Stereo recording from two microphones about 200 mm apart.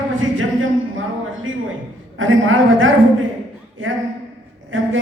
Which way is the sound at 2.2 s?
80° right.